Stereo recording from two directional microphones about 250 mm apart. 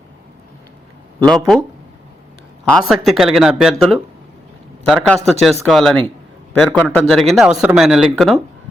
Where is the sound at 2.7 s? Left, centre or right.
Centre.